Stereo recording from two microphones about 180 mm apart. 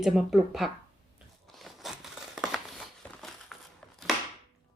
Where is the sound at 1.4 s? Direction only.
Centre (ahead or behind).